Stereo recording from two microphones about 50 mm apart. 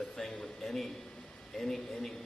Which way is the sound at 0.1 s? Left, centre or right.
Centre.